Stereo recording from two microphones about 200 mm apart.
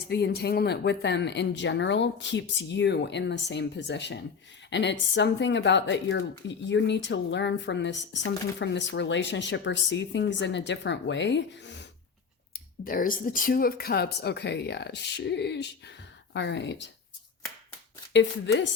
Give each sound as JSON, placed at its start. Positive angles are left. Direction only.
{"t": 0.1, "sound": "speech", "side_deg": 55}
{"t": 12.5, "sound": "speech", "side_deg": 45}
{"t": 18.1, "sound": "speech", "side_deg": 60}